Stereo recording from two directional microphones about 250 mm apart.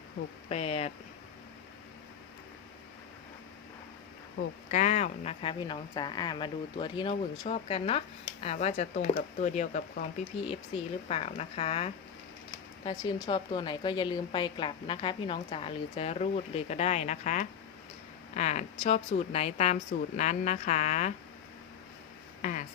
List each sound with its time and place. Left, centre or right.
0.4 s speech: left
4.7 s speech: left
11.1 s speech: left
22.4 s speech: left